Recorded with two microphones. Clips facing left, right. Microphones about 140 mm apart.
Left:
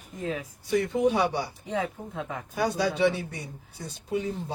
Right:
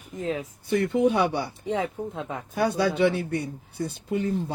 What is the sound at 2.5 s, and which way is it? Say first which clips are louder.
Speech: right 3 dB; 55° right (ahead or behind).